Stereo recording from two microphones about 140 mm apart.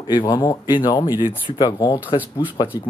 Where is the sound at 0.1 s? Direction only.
35° left (ahead or behind).